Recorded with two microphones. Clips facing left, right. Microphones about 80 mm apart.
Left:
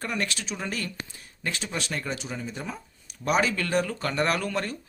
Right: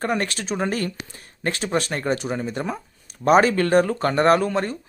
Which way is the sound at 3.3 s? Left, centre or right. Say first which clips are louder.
Right 9 dB; right.